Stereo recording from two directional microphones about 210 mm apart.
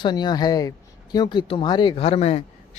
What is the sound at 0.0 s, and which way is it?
A man's voice, 20° left (ahead or behind).